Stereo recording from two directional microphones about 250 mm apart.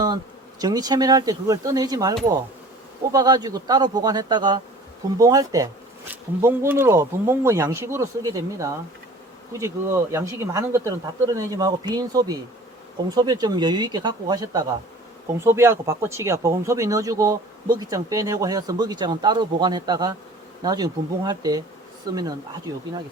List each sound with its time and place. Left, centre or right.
0.6 s speech: centre